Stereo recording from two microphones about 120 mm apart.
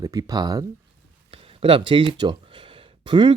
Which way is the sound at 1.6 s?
45° right (ahead or behind).